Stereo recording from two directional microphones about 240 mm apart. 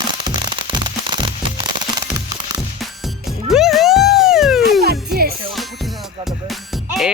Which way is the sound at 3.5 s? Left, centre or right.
Centre.